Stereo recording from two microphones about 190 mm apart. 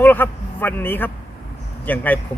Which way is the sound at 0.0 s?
10° left (ahead or behind).